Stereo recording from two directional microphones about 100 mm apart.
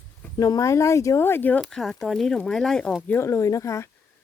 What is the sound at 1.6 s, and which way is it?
Speech, centre (ahead or behind).